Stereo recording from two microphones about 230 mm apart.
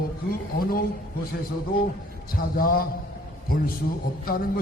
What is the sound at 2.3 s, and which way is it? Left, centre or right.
Speech, left.